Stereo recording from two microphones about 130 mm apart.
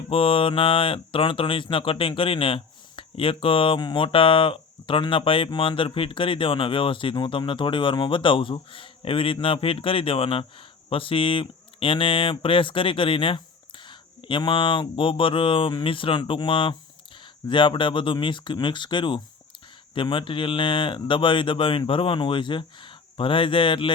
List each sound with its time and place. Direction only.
0.1 s speech: 45° left (ahead or behind)